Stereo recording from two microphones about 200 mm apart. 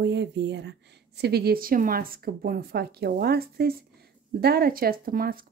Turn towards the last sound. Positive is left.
turn(degrees=-45)  # may be behind; listen again after turning